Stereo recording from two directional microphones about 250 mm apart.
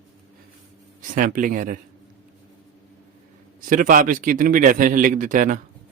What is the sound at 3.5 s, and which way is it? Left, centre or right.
A man's voice, right.